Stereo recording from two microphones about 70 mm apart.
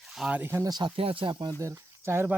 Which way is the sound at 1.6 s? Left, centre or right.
Right.